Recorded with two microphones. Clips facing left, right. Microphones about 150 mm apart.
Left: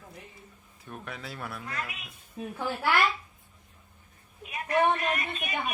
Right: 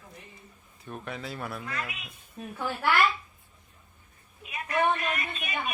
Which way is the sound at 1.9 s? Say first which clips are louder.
Right 1 dB; 45° left (ahead or behind).